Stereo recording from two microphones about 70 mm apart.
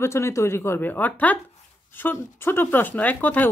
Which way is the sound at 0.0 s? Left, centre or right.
Left.